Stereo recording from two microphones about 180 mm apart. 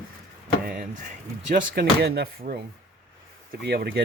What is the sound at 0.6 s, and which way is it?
Speech, 55° right (ahead or behind).